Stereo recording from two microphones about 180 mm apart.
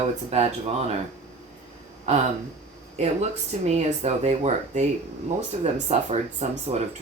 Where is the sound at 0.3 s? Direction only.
35° right (ahead or behind).